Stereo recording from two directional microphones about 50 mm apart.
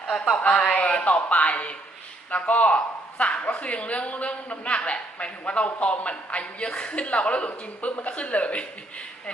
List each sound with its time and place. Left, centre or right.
0.1 s speech: centre
0.9 s speech: left